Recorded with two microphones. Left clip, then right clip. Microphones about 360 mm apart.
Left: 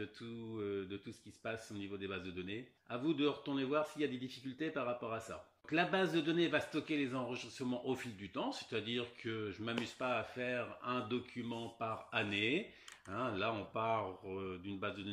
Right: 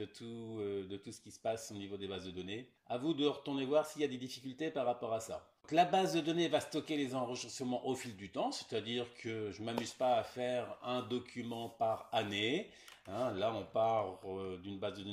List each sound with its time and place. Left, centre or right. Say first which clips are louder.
0.0 s speech: right 1 dB; centre